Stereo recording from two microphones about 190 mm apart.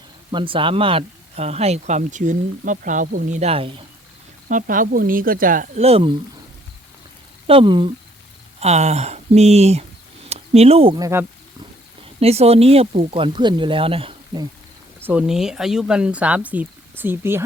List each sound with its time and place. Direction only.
0.3 s speech: 25° right (ahead or behind)
4.4 s speech: 45° right (ahead or behind); by 6.1 s 30° right (ahead or behind)
7.4 s speech: 25° right (ahead or behind)
12.2 s speech: 35° right (ahead or behind)
15.0 s speech: 5° right (ahead or behind)